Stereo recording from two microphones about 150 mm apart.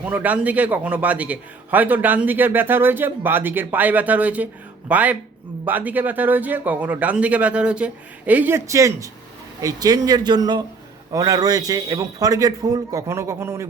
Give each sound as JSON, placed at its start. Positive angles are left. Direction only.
{"t": 0.0, "sound": "a man's voice", "side_deg": -10}